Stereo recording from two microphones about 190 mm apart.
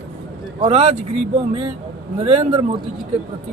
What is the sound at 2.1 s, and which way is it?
Speech, 30° right (ahead or behind).